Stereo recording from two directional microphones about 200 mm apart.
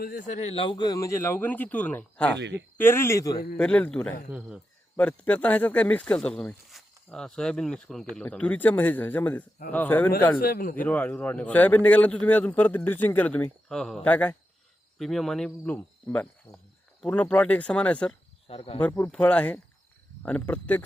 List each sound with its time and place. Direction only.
0.0 s a man's voice: 45° left (ahead or behind); by 2.4 s 5° left (ahead or behind)
2.4 s speech: 60° right (ahead or behind)
2.7 s a man's voice: 10° left (ahead or behind)
4.3 s speech: 5° right (ahead or behind)
4.9 s a man's voice: 5° left (ahead or behind)
10.4 s a man's voice: 45° left (ahead or behind)
10.8 s a man's voice: 10° left (ahead or behind)
18.4 s speech: 30° left (ahead or behind)
18.8 s a man's voice: 10° left (ahead or behind)